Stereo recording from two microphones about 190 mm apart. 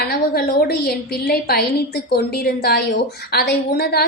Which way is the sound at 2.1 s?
55° left (ahead or behind).